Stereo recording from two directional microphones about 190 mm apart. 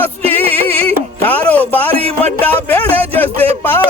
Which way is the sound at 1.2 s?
10° left (ahead or behind).